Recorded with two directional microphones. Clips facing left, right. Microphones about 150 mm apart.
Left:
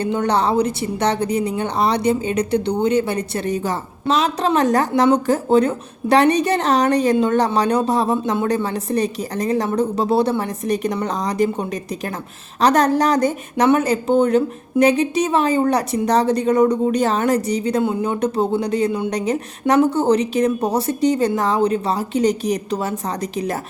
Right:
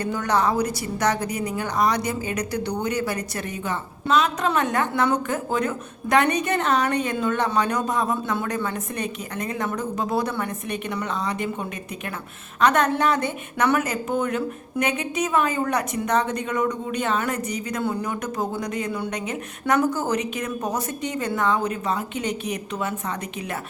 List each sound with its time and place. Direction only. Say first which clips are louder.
0.0 s a woman's voice: left 4 dB; 30° left (ahead or behind)
12.5 s a woman's voice: left 5 dB; 35° left (ahead or behind)